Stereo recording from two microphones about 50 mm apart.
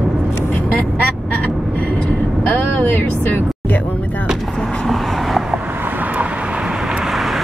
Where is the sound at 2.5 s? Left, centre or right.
Left.